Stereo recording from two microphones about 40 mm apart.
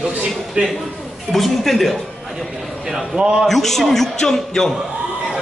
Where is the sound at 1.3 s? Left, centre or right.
Centre.